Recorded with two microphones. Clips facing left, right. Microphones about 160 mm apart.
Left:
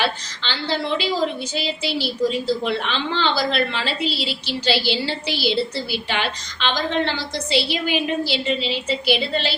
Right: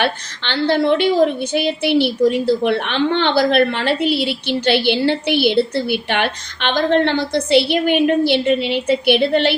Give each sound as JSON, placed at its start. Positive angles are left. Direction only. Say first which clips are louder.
{"t": 0.0, "sound": "a woman's voice", "louder": "right 4 dB", "side_deg": -60}